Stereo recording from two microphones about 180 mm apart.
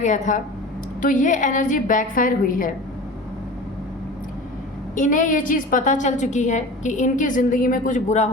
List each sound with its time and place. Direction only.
0.0 s a woman's voice: 45° left (ahead or behind)
4.9 s a woman's voice: 45° left (ahead or behind)